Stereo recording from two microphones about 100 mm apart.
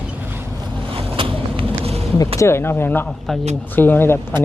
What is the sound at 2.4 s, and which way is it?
Speech, 25° left (ahead or behind).